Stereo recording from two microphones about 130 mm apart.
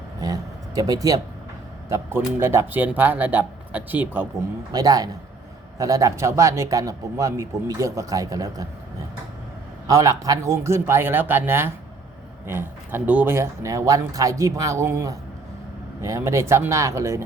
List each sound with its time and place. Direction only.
0.2 s vehicle: 30° right (ahead or behind)
1.9 s speech: 20° right (ahead or behind)
4.7 s speech: 30° right (ahead or behind)
9.8 s speech: 25° right (ahead or behind)